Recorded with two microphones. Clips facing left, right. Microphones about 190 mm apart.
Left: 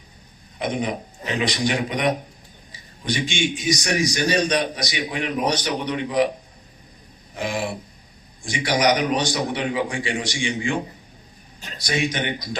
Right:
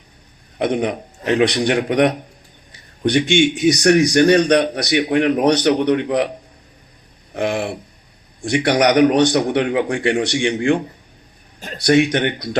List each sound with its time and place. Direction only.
0.6 s speech: 65° right (ahead or behind)
7.3 s speech: 60° right (ahead or behind)